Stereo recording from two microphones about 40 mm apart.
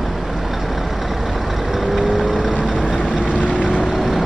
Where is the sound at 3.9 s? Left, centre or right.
Centre.